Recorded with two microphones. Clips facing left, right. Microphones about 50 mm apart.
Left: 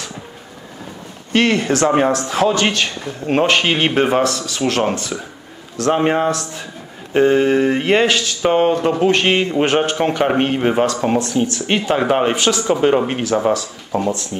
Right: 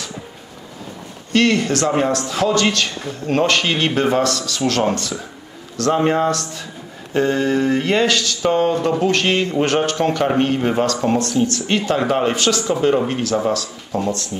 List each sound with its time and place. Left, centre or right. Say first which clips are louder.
1.3 s a man's voice: left 1 dB; left